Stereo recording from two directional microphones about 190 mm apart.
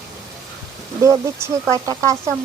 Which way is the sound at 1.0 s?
15° right (ahead or behind).